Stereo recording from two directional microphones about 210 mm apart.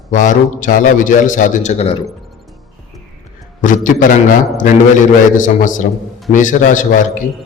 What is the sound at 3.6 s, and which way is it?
Speech, 40° left (ahead or behind).